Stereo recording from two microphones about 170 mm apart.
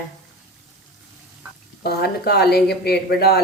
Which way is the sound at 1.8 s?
65° left (ahead or behind).